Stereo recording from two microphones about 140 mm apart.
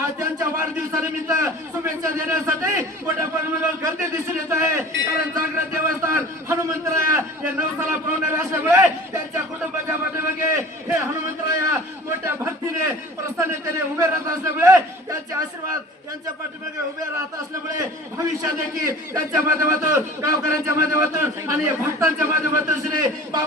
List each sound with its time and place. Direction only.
0.0 s a man's voice: 20° right (ahead or behind)
17.2 s a man's voice: 25° right (ahead or behind)